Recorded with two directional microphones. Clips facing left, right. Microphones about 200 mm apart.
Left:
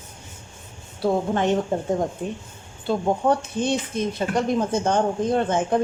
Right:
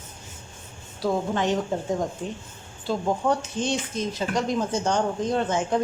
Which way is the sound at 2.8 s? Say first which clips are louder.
Left 3 dB; 60° left (ahead or behind).